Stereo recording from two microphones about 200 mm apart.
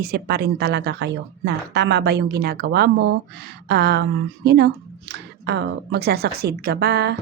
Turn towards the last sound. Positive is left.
turn(degrees=-55)  # may be behind; listen again after turning